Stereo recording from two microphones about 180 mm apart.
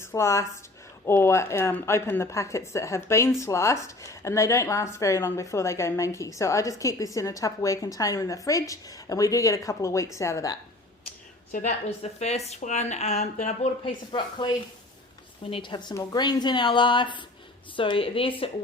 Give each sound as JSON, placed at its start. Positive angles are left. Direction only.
{"t": 0.0, "sound": "speech", "side_deg": 15}
{"t": 11.5, "sound": "a woman's voice", "side_deg": 50}
{"t": 12.2, "sound": "speech", "side_deg": 35}
{"t": 14.1, "sound": "a woman's voice", "side_deg": 25}